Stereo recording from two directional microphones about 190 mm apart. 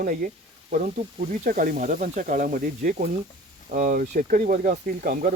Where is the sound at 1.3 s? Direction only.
45° right (ahead or behind).